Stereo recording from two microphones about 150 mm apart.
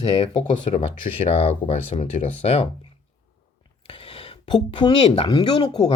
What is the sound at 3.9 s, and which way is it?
Speech, 40° left (ahead or behind).